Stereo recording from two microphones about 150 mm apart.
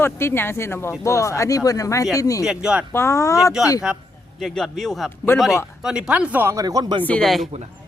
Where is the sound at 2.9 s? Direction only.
20° left (ahead or behind).